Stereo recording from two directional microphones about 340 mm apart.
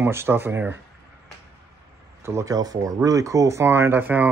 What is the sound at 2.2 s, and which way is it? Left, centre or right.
Speech, centre.